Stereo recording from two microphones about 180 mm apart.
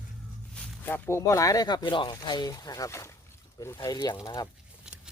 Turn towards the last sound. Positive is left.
turn(degrees=25)  # may be behind; listen again after turning